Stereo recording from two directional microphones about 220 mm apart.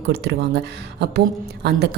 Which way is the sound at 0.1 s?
45° right (ahead or behind).